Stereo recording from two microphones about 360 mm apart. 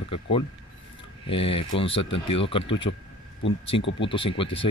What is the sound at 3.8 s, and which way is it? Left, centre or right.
Speech, left.